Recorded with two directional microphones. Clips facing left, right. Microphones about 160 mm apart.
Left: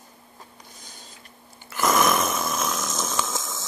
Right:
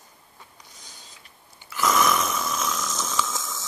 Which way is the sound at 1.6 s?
50° left (ahead or behind).